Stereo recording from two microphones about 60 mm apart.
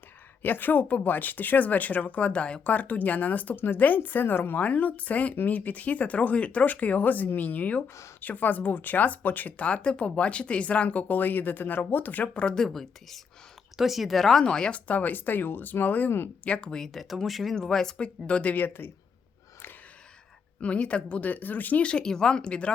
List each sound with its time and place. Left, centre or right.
0.4 s speech: left
12.3 s speech: centre
14.4 s speech: centre
14.8 s speech: left
16.4 s speech: centre
20.6 s speech: centre